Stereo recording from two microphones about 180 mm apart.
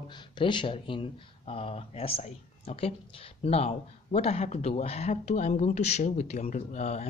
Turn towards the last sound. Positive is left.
turn(degrees=40)  # may be behind; listen again after turning